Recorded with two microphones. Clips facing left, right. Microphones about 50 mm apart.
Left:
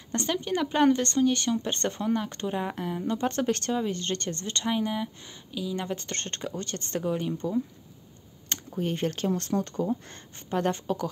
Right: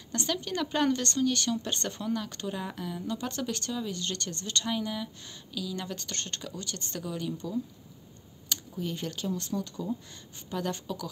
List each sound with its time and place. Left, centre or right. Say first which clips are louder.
0.1 s speech: left 4 dB; left
8.7 s speech: left 7 dB; left